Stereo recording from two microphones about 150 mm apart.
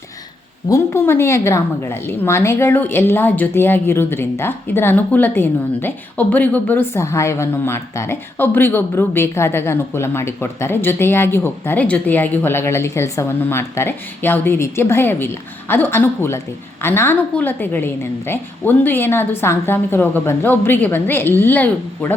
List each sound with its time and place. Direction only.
0.7 s a woman's voice: 15° left (ahead or behind)